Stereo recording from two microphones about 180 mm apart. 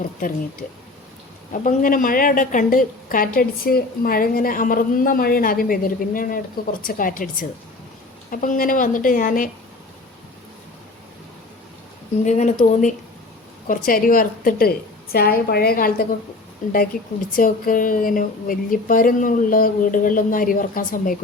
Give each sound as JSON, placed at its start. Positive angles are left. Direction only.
{"t": 1.5, "sound": "a woman's voice", "side_deg": 50}
{"t": 12.2, "sound": "a woman's voice", "side_deg": 40}
{"t": 17.3, "sound": "a woman's voice", "side_deg": 50}